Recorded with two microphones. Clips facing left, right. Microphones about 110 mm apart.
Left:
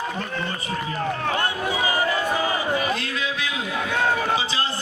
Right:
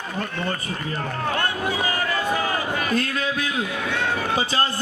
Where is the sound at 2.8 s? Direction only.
45° right (ahead or behind).